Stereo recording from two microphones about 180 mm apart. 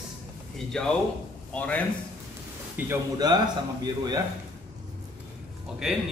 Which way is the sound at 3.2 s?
20° right (ahead or behind).